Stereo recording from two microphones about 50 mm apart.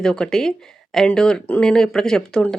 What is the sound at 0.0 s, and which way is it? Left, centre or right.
Speech, centre.